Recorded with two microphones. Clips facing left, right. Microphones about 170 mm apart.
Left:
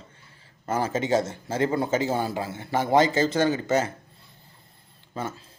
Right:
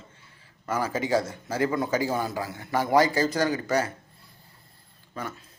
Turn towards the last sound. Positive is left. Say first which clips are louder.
# left 3 dB
turn(degrees=25)  # may be behind; listen again after turning